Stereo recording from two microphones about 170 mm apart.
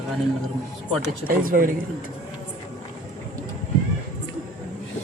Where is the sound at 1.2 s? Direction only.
55° right (ahead or behind).